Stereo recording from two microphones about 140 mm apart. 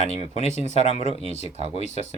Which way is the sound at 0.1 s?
50° left (ahead or behind).